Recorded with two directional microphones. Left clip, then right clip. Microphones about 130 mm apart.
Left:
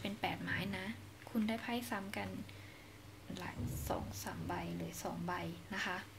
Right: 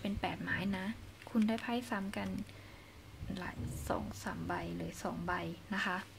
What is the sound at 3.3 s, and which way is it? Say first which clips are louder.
A woman's voice: right 2 dB; 35° right (ahead or behind).